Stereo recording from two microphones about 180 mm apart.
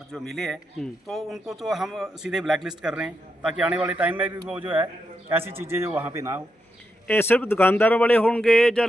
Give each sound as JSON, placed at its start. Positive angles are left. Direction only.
{"t": 0.1, "sound": "a man's voice", "side_deg": 0}
{"t": 7.1, "sound": "a man's voice", "side_deg": 10}